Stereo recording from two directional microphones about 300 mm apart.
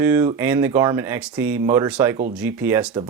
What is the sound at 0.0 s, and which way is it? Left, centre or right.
Speech, centre.